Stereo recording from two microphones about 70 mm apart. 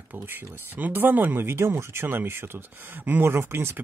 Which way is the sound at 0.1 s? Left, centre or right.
Right.